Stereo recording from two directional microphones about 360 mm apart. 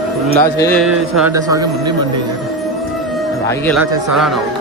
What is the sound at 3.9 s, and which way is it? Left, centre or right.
Speech, centre.